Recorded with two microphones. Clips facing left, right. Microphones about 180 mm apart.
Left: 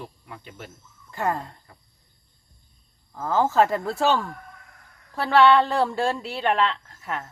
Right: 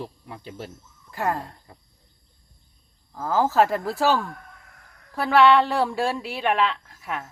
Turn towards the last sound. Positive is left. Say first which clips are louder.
# even
turn(degrees=-5)  # may be behind; listen again after turning